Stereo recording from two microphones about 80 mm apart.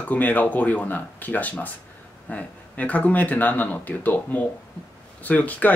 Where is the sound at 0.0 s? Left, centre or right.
Left.